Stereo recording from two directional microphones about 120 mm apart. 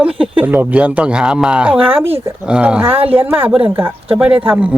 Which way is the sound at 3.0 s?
50° right (ahead or behind).